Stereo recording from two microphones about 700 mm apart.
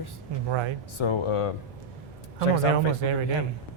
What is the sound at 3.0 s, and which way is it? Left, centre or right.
Speech, right.